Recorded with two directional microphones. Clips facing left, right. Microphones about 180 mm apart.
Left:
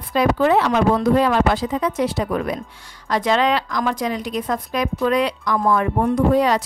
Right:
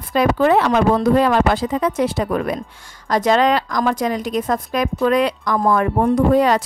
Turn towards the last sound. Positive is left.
turn(degrees=-50)  # may be behind; listen again after turning